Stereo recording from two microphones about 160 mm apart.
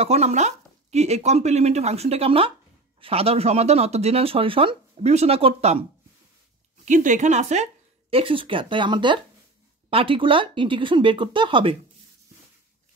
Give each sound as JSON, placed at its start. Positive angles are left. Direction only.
{"t": 0.0, "sound": "speech", "side_deg": -40}
{"t": 6.8, "sound": "speech", "side_deg": -55}